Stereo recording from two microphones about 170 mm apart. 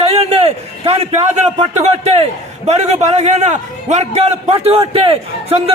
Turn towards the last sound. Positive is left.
turn(degrees=-35)  # may be behind; listen again after turning